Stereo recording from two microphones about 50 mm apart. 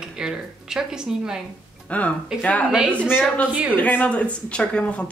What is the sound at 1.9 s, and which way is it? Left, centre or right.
Speech, left.